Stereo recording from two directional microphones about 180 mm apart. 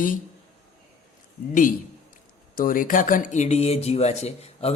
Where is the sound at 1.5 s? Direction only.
45° left (ahead or behind).